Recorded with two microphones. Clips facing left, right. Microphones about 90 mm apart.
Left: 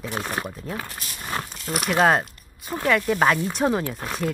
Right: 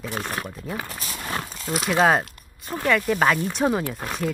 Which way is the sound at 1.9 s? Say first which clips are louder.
Even; centre (ahead or behind).